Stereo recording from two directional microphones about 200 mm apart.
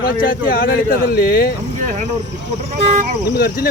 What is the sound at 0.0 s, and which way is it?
Speech, 45° left (ahead or behind).